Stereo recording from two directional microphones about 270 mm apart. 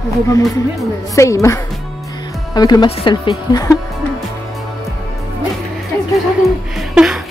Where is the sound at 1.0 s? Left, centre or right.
Centre.